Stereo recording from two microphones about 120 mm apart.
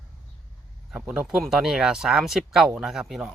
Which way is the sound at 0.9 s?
5° right (ahead or behind).